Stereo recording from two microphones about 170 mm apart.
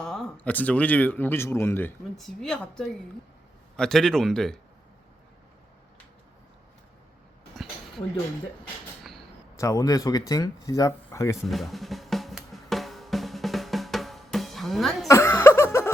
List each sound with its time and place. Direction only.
0.0 s speech: 5° left (ahead or behind)
2.1 s speech: centre (ahead or behind)
7.5 s a sound: centre (ahead or behind)
9.6 s speech: 20° left (ahead or behind)
11.4 s drum: centre (ahead or behind)
15.0 s a sound: 15° left (ahead or behind)